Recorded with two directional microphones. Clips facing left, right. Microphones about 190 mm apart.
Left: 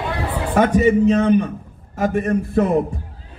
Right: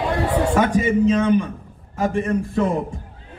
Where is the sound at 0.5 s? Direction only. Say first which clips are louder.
Left 7 dB; 40° left (ahead or behind).